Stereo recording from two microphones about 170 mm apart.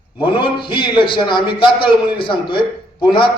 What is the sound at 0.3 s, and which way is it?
A man's voice, 30° left (ahead or behind).